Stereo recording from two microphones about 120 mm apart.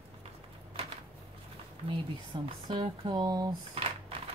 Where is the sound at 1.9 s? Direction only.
45° right (ahead or behind).